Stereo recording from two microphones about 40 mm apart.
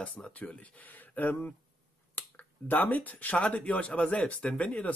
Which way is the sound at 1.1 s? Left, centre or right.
Left.